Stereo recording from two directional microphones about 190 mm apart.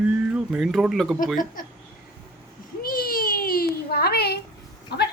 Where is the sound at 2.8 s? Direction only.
50° left (ahead or behind).